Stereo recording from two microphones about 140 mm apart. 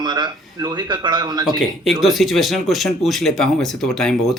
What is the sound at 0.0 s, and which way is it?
Speech, 30° right (ahead or behind).